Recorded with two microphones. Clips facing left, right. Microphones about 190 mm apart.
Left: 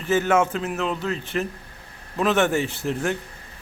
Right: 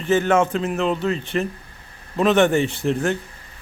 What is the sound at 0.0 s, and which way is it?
A man's voice, 5° left (ahead or behind).